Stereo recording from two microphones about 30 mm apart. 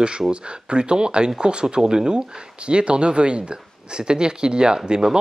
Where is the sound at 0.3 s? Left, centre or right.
Right.